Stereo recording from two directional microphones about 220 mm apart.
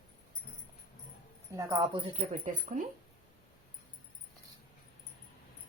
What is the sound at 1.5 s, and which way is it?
Speech, 15° right (ahead or behind).